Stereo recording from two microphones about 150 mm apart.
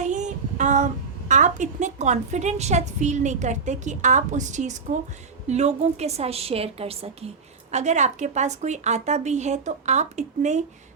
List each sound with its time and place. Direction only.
0.0 s child singing: 55° right (ahead or behind)
1.3 s a woman's voice: 55° right (ahead or behind)